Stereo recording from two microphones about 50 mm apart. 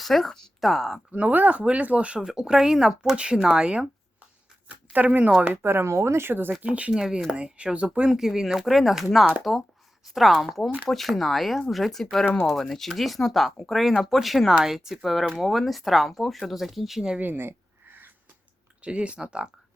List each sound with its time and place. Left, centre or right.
0.0 s speech: centre
1.1 s speech: right
2.1 s speech: centre
4.9 s speech: right
5.6 s speech: right
5.9 s speech: right
6.5 s speech: right
6.9 s speech: centre
8.1 s speech: centre
17.2 s a sound: right
18.8 s speech: right